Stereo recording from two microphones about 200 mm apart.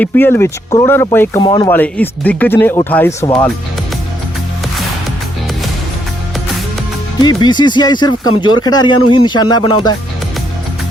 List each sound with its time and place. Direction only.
0.0 s speech: 10° left (ahead or behind)
1.4 s speech: 25° left (ahead or behind)
1.7 s speech: 10° left (ahead or behind)
3.2 s speech: 20° left (ahead or behind)
7.2 s speech: 20° left (ahead or behind)